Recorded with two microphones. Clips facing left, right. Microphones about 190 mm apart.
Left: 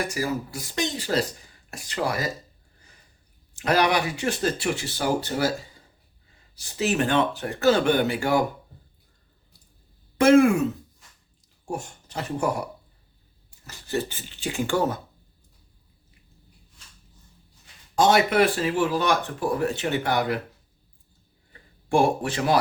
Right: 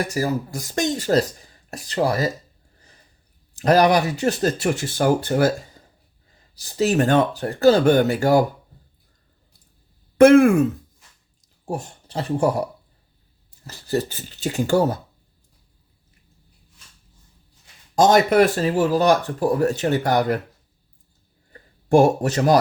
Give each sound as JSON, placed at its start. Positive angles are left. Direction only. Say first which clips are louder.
{"t": 0.1, "sound": "speech", "louder": "right 4 dB", "side_deg": -40}
{"t": 3.6, "sound": "speech", "louder": "right 6 dB", "side_deg": -40}
{"t": 6.6, "sound": "speech", "louder": "right 5 dB", "side_deg": -40}
{"t": 10.2, "sound": "speech", "louder": "right 5 dB", "side_deg": -55}
{"t": 11.6, "sound": "speech", "louder": "right 3 dB", "side_deg": -35}
{"t": 13.7, "sound": "speech", "louder": "right 4 dB", "side_deg": -35}
{"t": 17.9, "sound": "speech", "louder": "right 4 dB", "side_deg": -40}
{"t": 21.8, "sound": "speech", "louder": "right 6 dB", "side_deg": -40}